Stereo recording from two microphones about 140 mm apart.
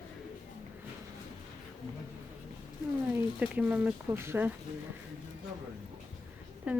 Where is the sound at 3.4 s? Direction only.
10° right (ahead or behind).